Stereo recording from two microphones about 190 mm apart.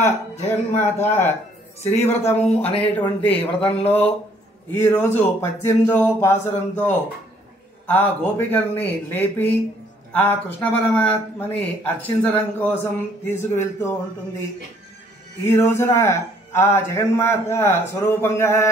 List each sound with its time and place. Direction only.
0.0 s a man's voice: 10° left (ahead or behind)
2.6 s speech: 30° left (ahead or behind)
3.3 s a man's voice: 10° left (ahead or behind)
15.4 s a man's voice: 15° left (ahead or behind)